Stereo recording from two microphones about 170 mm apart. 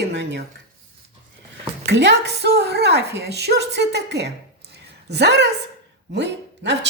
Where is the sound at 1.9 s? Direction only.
85° right.